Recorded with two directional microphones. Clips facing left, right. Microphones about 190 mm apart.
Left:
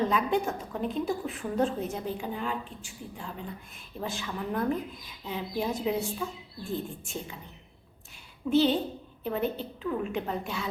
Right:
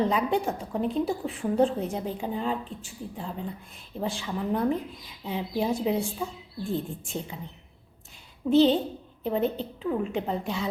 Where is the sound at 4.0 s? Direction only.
30° right (ahead or behind).